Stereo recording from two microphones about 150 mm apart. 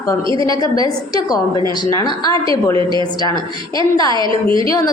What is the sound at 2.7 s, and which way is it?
Speech, 30° right (ahead or behind).